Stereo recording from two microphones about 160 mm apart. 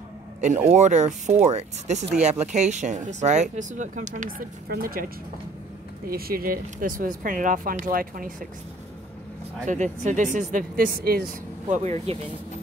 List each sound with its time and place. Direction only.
0.4 s speech: 45° right (ahead or behind); by 5.0 s 65° right (ahead or behind)
6.0 s speech: 70° right (ahead or behind)
9.7 s speech: 50° right (ahead or behind); by 11.2 s 70° right (ahead or behind)
11.7 s speech: 45° right (ahead or behind)